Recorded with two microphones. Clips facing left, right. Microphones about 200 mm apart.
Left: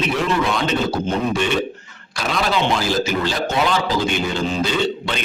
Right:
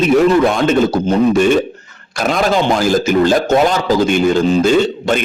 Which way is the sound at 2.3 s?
45° right (ahead or behind).